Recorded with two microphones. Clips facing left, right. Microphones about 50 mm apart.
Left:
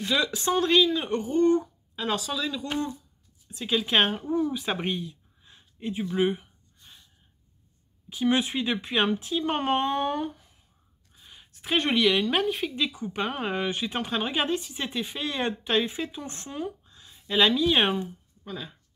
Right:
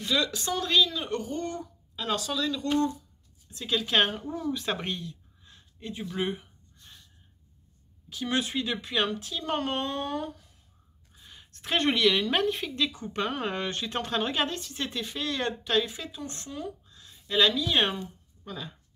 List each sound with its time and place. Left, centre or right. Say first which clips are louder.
0.0 s a woman's voice: left 2 dB; centre
4.7 s a sound: left 4 dB; centre
8.1 s speech: left 5 dB; left
11.1 s a woman's voice: even; centre